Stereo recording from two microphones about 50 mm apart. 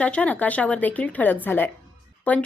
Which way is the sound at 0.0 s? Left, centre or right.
Left.